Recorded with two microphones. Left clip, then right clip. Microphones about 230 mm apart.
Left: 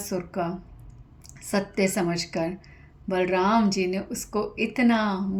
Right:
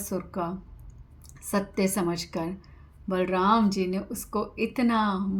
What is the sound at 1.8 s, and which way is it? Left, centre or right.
A woman's voice, right.